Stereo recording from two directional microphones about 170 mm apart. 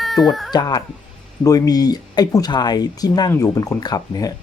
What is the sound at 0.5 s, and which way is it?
Speech, 25° left (ahead or behind).